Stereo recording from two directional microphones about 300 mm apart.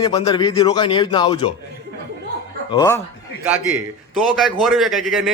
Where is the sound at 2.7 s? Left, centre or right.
Centre.